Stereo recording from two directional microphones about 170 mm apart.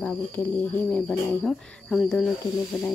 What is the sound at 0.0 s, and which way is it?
Speech, 5° left (ahead or behind).